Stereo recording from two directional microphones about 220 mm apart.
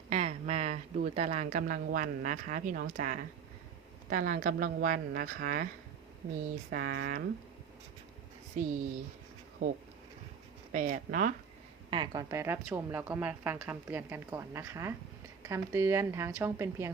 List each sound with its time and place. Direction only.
0.1 s a woman's voice: 30° right (ahead or behind)
6.7 s speech: 45° right (ahead or behind)
9.6 s a woman's voice: 35° right (ahead or behind)
11.9 s a woman's voice: 20° right (ahead or behind)